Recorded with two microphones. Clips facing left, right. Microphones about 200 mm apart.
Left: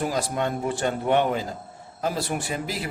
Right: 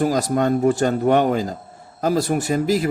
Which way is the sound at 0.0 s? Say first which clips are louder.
Right 7 dB; 45° right (ahead or behind).